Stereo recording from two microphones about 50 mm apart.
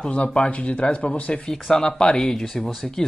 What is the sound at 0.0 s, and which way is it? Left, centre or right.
Speech, left.